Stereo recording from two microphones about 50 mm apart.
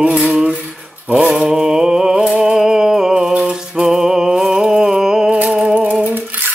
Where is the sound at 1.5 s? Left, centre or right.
Centre.